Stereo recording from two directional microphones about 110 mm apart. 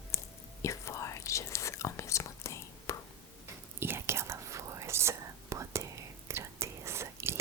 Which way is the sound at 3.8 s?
20° right (ahead or behind).